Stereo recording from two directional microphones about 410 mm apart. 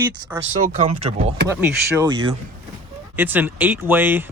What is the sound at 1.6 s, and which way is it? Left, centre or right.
Speech, centre.